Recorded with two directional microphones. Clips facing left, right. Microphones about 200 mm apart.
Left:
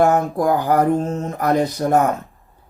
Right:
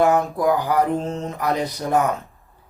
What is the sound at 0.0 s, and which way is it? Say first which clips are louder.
Speech: left 2 dB; 50° left (ahead or behind).